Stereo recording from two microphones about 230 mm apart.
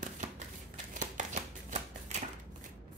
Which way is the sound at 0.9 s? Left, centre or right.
Right.